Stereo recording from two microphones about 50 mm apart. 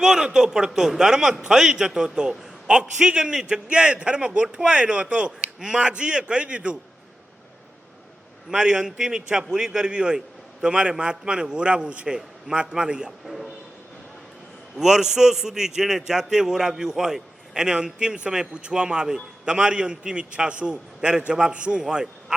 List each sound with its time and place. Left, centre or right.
0.0 s a man's voice: centre
8.4 s a man's voice: centre
13.2 s a man's voice: centre
14.8 s a man's voice: centre